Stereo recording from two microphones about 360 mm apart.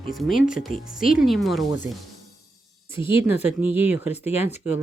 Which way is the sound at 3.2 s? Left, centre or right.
Centre.